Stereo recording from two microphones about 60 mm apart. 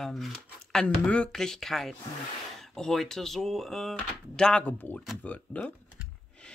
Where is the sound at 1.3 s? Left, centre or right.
Centre.